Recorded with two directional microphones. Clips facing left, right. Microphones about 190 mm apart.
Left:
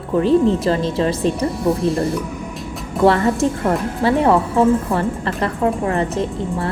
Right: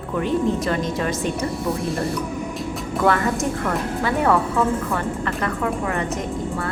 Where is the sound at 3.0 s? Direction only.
30° left (ahead or behind).